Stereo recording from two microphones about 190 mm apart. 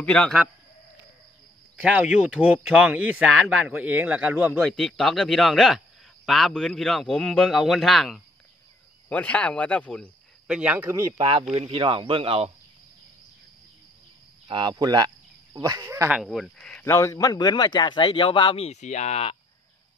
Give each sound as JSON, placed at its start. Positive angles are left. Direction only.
{"t": 0.0, "sound": "speech", "side_deg": 5}
{"t": 1.8, "sound": "speech", "side_deg": -5}
{"t": 4.6, "sound": "speech", "side_deg": 0}
{"t": 11.1, "sound": "speech", "side_deg": -30}
{"t": 14.5, "sound": "speech", "side_deg": -25}
{"t": 16.2, "sound": "speech", "side_deg": 0}
{"t": 16.8, "sound": "a man's voice", "side_deg": 15}